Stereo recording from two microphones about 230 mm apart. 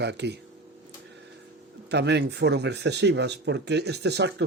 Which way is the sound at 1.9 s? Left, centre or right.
Right.